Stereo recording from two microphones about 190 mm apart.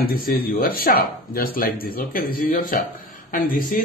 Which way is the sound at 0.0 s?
50° left (ahead or behind).